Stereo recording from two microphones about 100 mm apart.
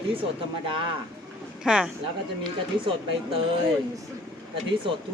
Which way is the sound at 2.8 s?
65° right (ahead or behind).